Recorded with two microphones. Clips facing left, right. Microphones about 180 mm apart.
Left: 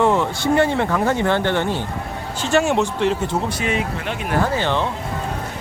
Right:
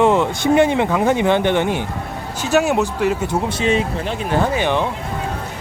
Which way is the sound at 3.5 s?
25° right (ahead or behind).